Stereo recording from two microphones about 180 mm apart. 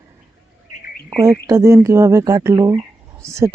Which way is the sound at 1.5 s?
15° right (ahead or behind).